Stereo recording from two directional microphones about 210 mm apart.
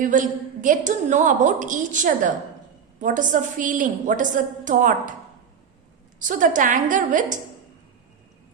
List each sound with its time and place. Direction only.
0.0 s a woman's voice: 40° right (ahead or behind)
6.1 s a woman's voice: 40° right (ahead or behind)